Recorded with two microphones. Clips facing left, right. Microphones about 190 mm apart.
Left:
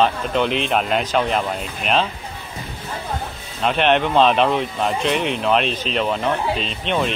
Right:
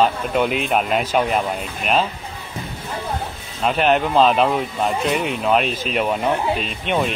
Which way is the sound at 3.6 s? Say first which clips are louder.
Even; 5° right (ahead or behind).